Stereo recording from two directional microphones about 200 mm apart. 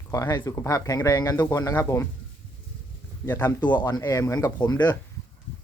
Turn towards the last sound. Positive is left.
turn(degrees=20)  # may be behind; listen again after turning